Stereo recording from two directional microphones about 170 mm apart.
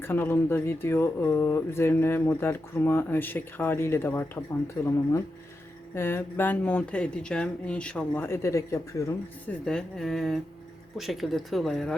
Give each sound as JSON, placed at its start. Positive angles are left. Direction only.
{"t": 0.0, "sound": "speech", "side_deg": 15}
{"t": 9.5, "sound": "speech", "side_deg": 5}